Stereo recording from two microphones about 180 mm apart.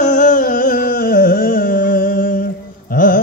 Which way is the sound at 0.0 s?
45° left (ahead or behind).